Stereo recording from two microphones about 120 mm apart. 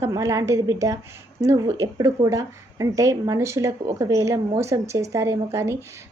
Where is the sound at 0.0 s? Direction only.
25° right (ahead or behind).